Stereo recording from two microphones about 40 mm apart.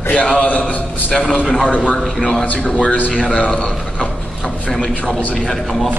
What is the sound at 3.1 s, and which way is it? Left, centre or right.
Speech, left.